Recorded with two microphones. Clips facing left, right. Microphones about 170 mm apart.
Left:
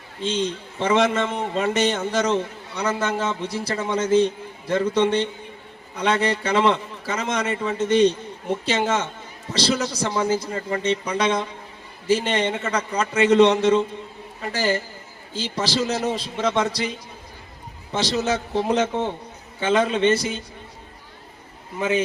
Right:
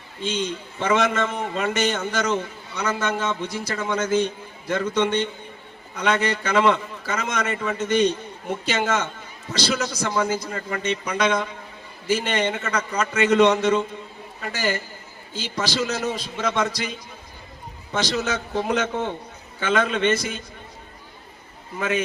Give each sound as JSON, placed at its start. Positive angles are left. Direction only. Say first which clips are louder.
{"t": 0.2, "sound": "a man's voice", "louder": "left 2 dB", "side_deg": 30}
{"t": 17.9, "sound": "a man's voice", "louder": "left 2 dB", "side_deg": 30}
{"t": 21.8, "sound": "a man's voice", "louder": "left 2 dB", "side_deg": 25}